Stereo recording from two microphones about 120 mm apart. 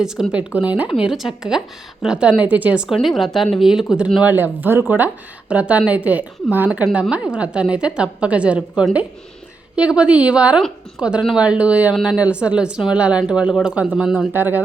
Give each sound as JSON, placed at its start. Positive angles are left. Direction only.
{"t": 0.0, "sound": "a woman's voice", "side_deg": -5}
{"t": 3.0, "sound": "a woman's voice", "side_deg": 0}
{"t": 14.3, "sound": "a woman's voice", "side_deg": -15}